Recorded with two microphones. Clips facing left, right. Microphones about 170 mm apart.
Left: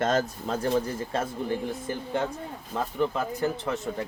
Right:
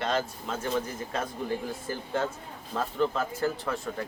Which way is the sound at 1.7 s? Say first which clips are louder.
Left 2 dB; 20° left (ahead or behind).